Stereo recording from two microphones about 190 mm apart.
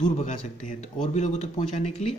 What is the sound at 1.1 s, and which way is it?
Speech, 35° left (ahead or behind).